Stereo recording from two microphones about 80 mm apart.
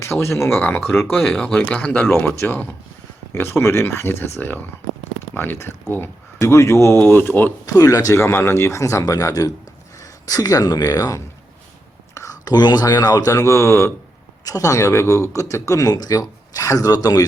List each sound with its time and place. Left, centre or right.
0.0 s speech: left
1.2 s speech: centre
3.3 s speech: left
7.6 s speech: left
12.1 s whispering: left
12.5 s speech: left